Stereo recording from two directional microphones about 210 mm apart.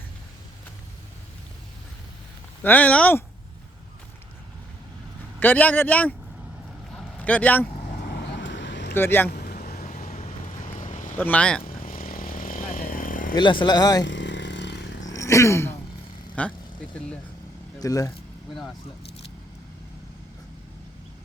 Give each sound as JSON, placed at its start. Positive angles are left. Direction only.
{"t": 2.6, "sound": "a man's voice", "side_deg": 5}
{"t": 5.4, "sound": "a man's voice", "side_deg": 10}
{"t": 6.9, "sound": "vehicle", "side_deg": 5}
{"t": 8.1, "sound": "vehicle", "side_deg": 55}
{"t": 8.9, "sound": "speech", "side_deg": 10}
{"t": 9.3, "sound": "vehicle", "side_deg": 45}
{"t": 11.2, "sound": "a man's voice", "side_deg": 5}
{"t": 11.6, "sound": "vehicle", "side_deg": 40}
{"t": 13.3, "sound": "speech", "side_deg": 20}
{"t": 14.0, "sound": "vehicle", "side_deg": 60}
{"t": 15.1, "sound": "a sound", "side_deg": 15}
{"t": 16.4, "sound": "a man's voice", "side_deg": 5}
{"t": 17.7, "sound": "speech", "side_deg": 15}